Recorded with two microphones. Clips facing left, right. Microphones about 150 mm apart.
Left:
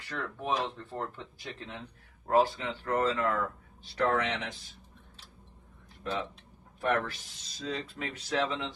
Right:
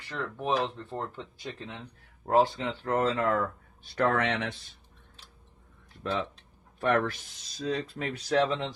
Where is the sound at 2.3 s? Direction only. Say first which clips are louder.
Right 2 dB; 25° right (ahead or behind).